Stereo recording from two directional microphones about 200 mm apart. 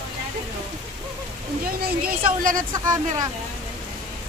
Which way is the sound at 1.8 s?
45° right (ahead or behind).